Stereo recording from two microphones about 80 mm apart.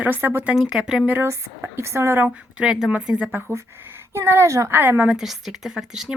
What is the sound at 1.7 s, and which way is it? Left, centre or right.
Speech, right.